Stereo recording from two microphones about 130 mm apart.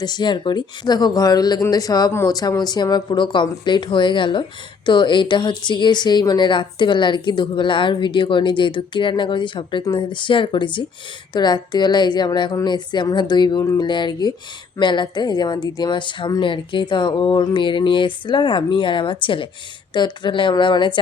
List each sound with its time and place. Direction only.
0.0 s a woman's voice: 35° left (ahead or behind)